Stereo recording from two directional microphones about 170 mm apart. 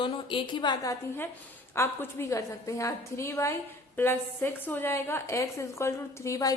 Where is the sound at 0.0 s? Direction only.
30° left (ahead or behind).